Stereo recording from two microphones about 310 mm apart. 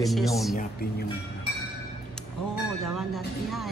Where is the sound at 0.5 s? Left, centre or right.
Left.